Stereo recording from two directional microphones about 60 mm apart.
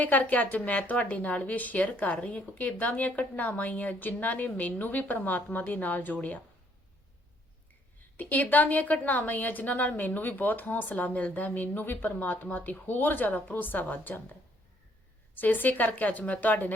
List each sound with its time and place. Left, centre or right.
0.0 s a woman's voice: left
8.1 s a woman's voice: left
15.4 s a woman's voice: left